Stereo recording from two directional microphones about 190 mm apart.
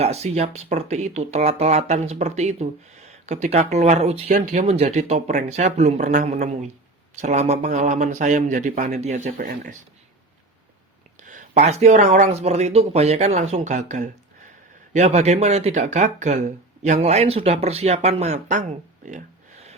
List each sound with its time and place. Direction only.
0.0 s speech: 35° right (ahead or behind)
4.3 s speech: 45° right (ahead or behind)
11.2 s speech: 40° right (ahead or behind)
19.0 s a sound: 40° right (ahead or behind)